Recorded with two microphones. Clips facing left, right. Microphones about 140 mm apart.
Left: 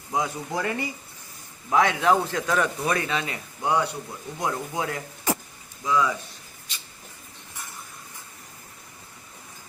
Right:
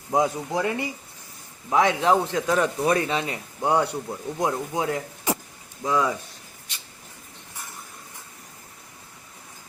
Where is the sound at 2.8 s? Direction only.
30° right (ahead or behind).